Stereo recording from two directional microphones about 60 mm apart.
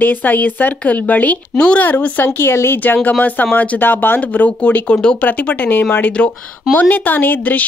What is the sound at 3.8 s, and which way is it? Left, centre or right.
Speech, left.